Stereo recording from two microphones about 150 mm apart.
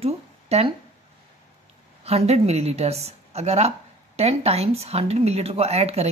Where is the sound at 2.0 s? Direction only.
45° right (ahead or behind).